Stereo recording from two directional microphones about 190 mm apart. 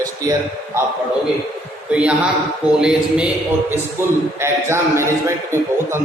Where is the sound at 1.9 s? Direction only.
5° right (ahead or behind).